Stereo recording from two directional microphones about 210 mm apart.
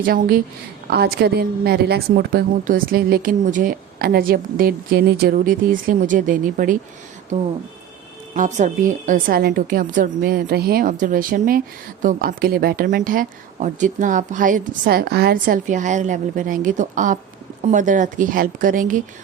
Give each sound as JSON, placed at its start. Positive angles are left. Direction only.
{"t": 0.0, "sound": "a woman's voice", "side_deg": -45}
{"t": 8.3, "sound": "speech", "side_deg": -35}